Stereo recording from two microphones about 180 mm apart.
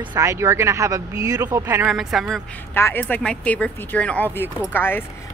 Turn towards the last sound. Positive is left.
turn(degrees=10)  # may be behind; listen again after turning